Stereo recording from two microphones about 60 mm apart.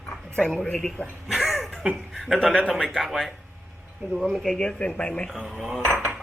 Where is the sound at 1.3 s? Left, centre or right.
Centre.